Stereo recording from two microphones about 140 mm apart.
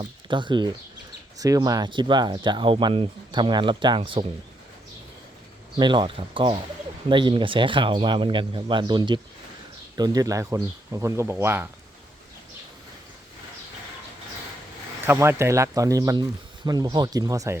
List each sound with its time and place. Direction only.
0.0 s speech: 35° right (ahead or behind)
5.8 s speech: 35° right (ahead or behind); by 11.7 s 15° right (ahead or behind)
15.0 s speech: 15° right (ahead or behind)